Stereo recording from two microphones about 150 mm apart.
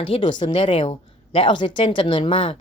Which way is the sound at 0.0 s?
30° left (ahead or behind).